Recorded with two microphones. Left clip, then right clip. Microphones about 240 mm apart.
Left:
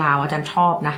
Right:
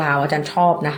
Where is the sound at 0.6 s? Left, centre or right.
Left.